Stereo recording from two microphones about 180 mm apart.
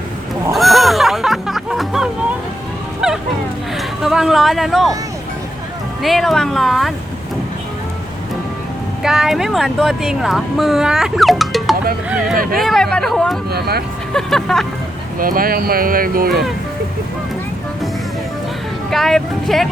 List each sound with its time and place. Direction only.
0.5 s music: centre (ahead or behind)
3.8 s a sound: centre (ahead or behind)
6.0 s speech: centre (ahead or behind)
9.0 s speech: 5° right (ahead or behind)
12.4 s speech: 55° right (ahead or behind)
12.6 s speech: 5° left (ahead or behind)
13.5 s speech: 60° right (ahead or behind)
14.1 s speech: 5° left (ahead or behind)
15.2 s speech: 50° right (ahead or behind)
18.9 s speech: centre (ahead or behind)